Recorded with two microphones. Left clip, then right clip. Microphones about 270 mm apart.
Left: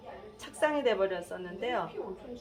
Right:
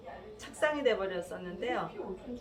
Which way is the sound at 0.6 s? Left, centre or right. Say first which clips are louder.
Left 2 dB; left.